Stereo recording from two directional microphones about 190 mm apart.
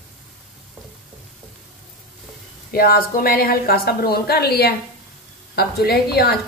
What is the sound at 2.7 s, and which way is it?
A woman's voice, 50° left (ahead or behind).